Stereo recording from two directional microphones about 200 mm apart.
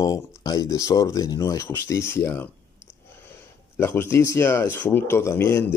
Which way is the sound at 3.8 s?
10° left (ahead or behind).